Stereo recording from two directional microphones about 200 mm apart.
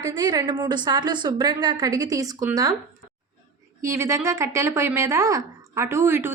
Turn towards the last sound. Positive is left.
turn(degrees=-10)  # may be behind; listen again after turning